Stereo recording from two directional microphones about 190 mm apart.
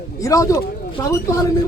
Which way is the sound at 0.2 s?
15° left (ahead or behind).